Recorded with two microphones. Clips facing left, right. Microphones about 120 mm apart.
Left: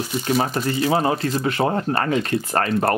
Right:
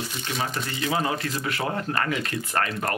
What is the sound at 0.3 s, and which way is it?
Speech, 40° left (ahead or behind).